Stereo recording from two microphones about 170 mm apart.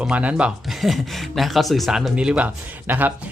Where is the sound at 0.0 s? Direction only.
5° right (ahead or behind).